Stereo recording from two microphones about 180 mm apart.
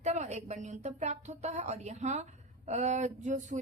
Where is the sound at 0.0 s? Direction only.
40° right (ahead or behind).